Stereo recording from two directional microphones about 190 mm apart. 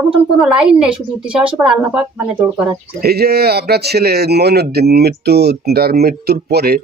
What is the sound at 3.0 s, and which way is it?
Speech, 55° right (ahead or behind).